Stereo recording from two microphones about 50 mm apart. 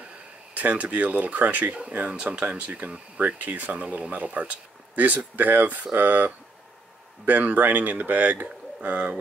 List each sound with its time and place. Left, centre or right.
0.6 s speech: right